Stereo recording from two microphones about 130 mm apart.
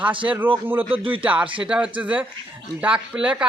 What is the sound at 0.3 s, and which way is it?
Speech, 15° right (ahead or behind).